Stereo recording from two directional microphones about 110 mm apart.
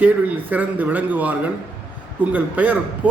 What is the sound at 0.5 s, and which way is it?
A man's voice, 15° right (ahead or behind).